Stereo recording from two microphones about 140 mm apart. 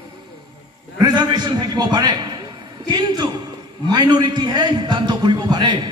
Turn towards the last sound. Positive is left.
turn(degrees=-35)  # may be behind; listen again after turning